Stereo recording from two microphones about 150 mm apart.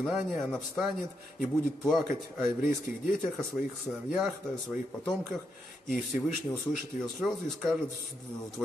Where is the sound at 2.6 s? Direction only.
60° left (ahead or behind).